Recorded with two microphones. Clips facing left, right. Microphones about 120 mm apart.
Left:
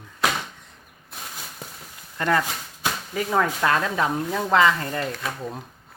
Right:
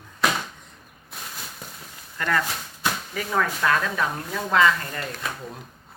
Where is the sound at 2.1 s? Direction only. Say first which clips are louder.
Left 3 dB; 25° left (ahead or behind).